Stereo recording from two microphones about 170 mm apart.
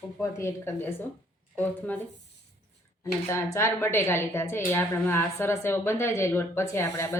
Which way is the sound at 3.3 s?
15° left (ahead or behind).